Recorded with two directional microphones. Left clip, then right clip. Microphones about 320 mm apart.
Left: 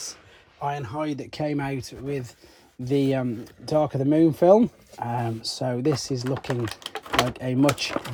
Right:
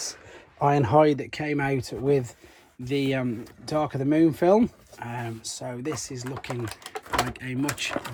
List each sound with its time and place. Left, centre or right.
0.6 s speech: centre
1.0 s speech: centre
6.2 s speech: centre